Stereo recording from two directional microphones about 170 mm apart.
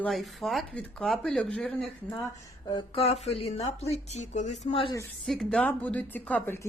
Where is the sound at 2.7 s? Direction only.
35° left (ahead or behind).